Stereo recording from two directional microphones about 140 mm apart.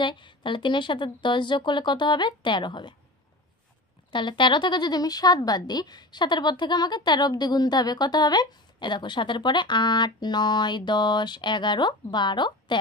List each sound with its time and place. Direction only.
0.0 s speech: 35° left (ahead or behind)
4.1 s speech: 35° left (ahead or behind)